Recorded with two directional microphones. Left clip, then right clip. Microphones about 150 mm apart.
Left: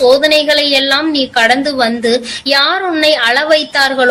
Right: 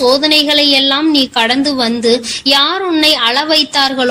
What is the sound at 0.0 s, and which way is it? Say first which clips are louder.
A woman's voice: left 2 dB; 40° right (ahead or behind).